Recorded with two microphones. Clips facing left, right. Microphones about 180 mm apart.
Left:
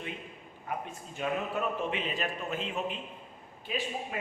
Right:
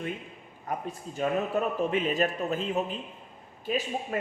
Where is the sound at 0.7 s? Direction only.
40° right (ahead or behind).